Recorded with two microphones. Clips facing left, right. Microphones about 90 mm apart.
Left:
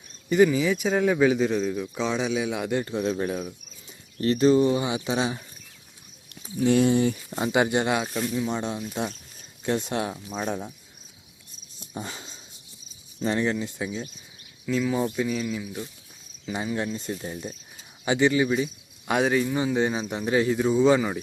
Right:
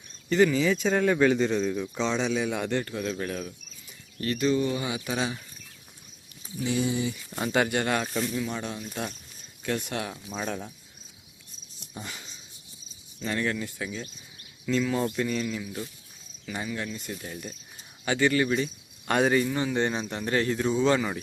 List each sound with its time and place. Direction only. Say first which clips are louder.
0.3 s a man's voice: left 2 dB; 15° left (ahead or behind)
2.8 s speech: left 5 dB; 25° left (ahead or behind)
3.8 s speech: left 6 dB; 30° left (ahead or behind)
6.6 s speech: left 7 dB; 60° left (ahead or behind)
7.3 s speech: left 3 dB; 20° left (ahead or behind)
8.4 s speech: left 5 dB; 25° left (ahead or behind)
8.8 s speech: left 4 dB; 15° left (ahead or behind)
10.2 s speech: left 3 dB; 10° left (ahead or behind)
11.9 s a sound: left 5 dB; 30° left (ahead or behind)
13.3 s speech: left 2 dB; 20° left (ahead or behind)
14.7 s a man's voice: left 1 dB; 10° left (ahead or behind)
16.5 s speech: left 5 dB; 25° left (ahead or behind); by 19.5 s centre (ahead or behind)
19.5 s speech: left 3 dB; 10° left (ahead or behind)